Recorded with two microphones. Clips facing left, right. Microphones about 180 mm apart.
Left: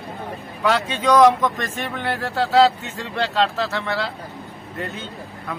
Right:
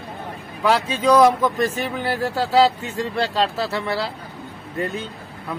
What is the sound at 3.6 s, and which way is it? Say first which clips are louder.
Speech: right 1 dB; 10° right (ahead or behind).